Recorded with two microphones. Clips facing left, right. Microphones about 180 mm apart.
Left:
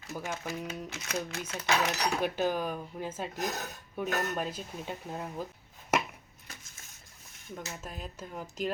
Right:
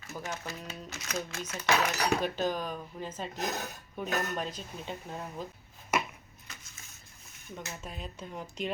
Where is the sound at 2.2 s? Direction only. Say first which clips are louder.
Left 2 dB; 10° left (ahead or behind).